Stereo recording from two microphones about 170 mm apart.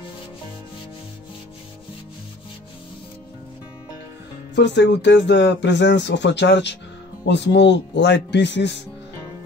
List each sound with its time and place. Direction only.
4.6 s speech: 90° left